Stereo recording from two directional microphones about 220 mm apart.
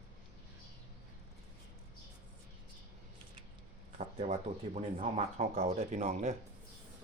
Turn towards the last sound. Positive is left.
turn(degrees=-30)  # may be behind; listen again after turning